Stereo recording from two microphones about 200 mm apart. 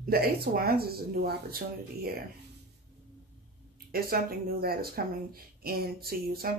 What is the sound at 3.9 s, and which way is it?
A woman's voice, 50° right (ahead or behind).